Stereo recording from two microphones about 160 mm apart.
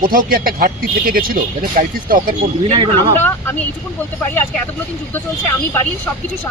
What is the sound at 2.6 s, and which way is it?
Speech, 35° right (ahead or behind).